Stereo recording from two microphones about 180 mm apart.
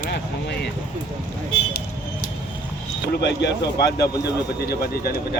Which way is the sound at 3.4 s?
70° left (ahead or behind).